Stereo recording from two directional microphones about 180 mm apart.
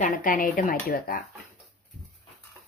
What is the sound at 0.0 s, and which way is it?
A woman's voice, 50° left (ahead or behind).